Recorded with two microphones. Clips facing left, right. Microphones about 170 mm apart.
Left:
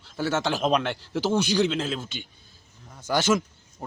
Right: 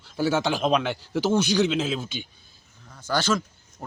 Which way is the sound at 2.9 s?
20° left (ahead or behind).